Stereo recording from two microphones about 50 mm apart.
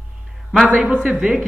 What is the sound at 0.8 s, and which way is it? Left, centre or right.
Speech, right.